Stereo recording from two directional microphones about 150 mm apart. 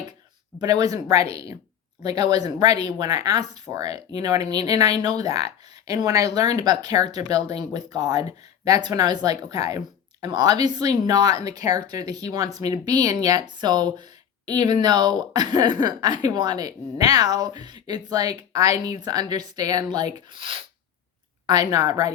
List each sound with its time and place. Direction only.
0.6 s speech: 25° right (ahead or behind)